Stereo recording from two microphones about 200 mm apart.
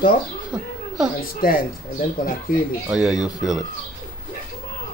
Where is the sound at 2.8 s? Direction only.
5° right (ahead or behind).